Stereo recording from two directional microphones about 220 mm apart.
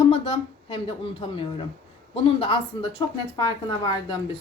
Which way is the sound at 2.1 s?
25° left (ahead or behind).